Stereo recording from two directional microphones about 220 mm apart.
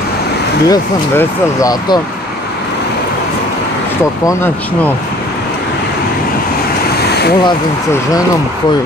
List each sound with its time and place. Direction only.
0.7 s speech: 15° left (ahead or behind)
4.3 s speech: 10° left (ahead or behind)
7.1 s a sound: 50° left (ahead or behind)